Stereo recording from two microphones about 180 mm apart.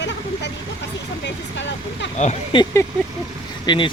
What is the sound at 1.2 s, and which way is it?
Vehicle, 75° left (ahead or behind).